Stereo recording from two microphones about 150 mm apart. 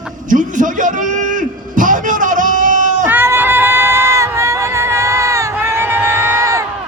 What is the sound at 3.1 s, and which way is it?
Crowd, 15° right (ahead or behind).